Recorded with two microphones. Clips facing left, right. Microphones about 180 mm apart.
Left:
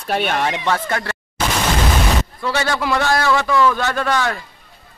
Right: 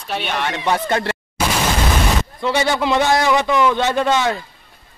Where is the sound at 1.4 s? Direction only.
10° right (ahead or behind).